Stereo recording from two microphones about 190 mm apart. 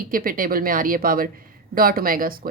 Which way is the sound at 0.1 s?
45° right (ahead or behind).